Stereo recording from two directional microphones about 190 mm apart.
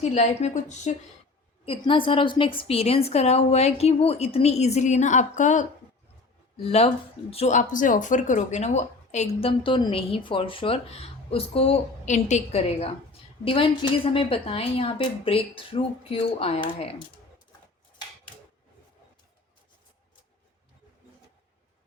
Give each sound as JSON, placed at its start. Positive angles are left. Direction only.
{"t": 0.0, "sound": "speech", "side_deg": 35}
{"t": 1.6, "sound": "a woman's voice", "side_deg": 30}